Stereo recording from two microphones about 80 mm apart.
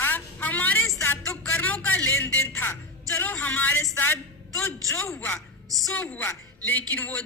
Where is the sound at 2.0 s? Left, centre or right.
Left.